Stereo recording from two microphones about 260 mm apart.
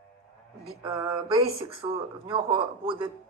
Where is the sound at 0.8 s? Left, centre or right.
Centre.